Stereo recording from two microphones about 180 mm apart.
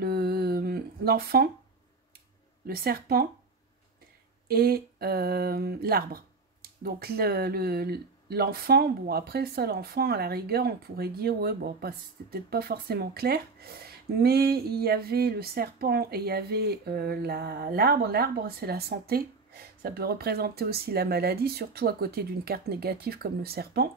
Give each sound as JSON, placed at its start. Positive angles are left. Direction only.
{"t": 0.0, "sound": "a sound", "side_deg": -60}
{"t": 2.6, "sound": "speech", "side_deg": -60}
{"t": 4.5, "sound": "speech", "side_deg": -55}